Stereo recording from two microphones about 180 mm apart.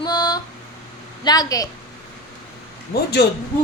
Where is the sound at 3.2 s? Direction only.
65° left (ahead or behind).